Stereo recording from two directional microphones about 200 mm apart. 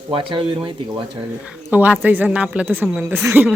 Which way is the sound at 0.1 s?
25° right (ahead or behind).